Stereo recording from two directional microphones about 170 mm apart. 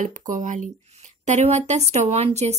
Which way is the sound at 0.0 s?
50° right (ahead or behind).